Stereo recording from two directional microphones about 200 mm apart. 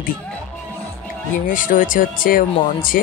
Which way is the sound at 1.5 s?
40° left (ahead or behind).